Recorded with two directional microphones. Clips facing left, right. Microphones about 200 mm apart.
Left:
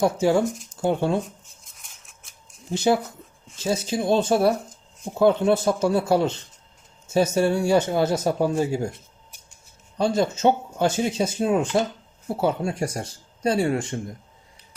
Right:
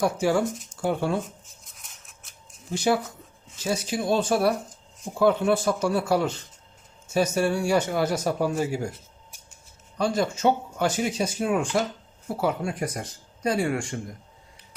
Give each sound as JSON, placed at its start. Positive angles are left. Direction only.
{"t": 0.0, "sound": "speech", "side_deg": 25}
{"t": 1.2, "sound": "a sound", "side_deg": 0}
{"t": 2.7, "sound": "speech", "side_deg": 25}
{"t": 10.0, "sound": "speech", "side_deg": 25}